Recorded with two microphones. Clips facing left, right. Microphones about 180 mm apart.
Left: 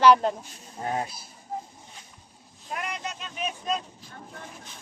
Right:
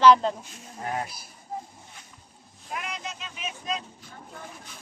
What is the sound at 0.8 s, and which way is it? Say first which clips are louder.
Speech: left 2 dB; 25° left (ahead or behind).